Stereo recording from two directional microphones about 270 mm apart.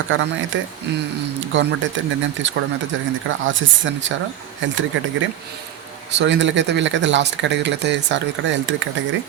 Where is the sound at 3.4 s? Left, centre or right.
Right.